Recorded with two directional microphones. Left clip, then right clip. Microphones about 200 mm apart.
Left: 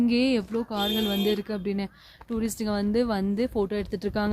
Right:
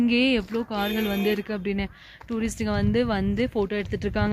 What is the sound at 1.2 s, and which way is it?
Speech, centre (ahead or behind).